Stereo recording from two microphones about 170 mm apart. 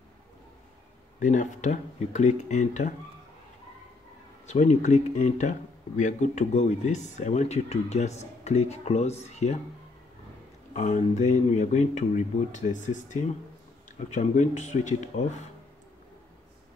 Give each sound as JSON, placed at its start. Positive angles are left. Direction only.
{"t": 1.2, "sound": "speech", "side_deg": 50}
{"t": 4.5, "sound": "speech", "side_deg": 45}
{"t": 10.7, "sound": "speech", "side_deg": 45}